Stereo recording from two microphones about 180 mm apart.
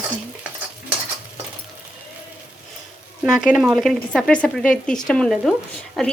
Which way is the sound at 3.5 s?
Centre (ahead or behind).